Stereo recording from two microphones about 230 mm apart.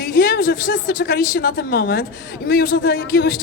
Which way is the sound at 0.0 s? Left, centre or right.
Left.